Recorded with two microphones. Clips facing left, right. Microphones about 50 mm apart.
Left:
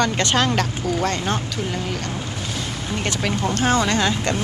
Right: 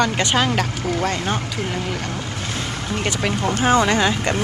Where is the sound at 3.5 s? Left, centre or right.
Centre.